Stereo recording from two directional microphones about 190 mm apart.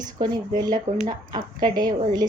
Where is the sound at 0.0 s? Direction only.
20° right (ahead or behind).